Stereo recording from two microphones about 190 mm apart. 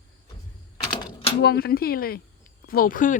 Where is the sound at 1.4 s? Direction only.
55° left (ahead or behind).